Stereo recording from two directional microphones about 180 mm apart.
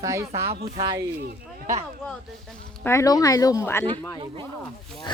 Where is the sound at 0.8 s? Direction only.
20° right (ahead or behind).